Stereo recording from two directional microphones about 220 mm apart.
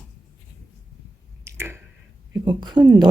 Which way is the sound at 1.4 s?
10° right (ahead or behind).